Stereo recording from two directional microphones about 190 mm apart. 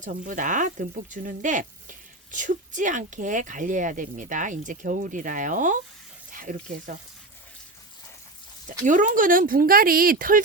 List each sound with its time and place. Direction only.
0.0 s speech: 40° right (ahead or behind)
8.8 s speech: 40° right (ahead or behind)